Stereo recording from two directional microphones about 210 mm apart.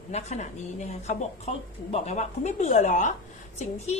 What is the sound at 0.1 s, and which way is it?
A woman's voice, 30° left (ahead or behind).